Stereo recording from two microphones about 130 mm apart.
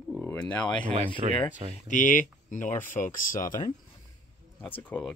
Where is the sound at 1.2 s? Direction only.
55° right (ahead or behind).